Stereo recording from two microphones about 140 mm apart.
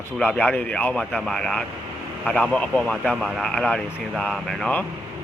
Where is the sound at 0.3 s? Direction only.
10° left (ahead or behind).